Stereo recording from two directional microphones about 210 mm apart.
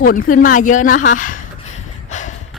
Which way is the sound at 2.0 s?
35° left (ahead or behind).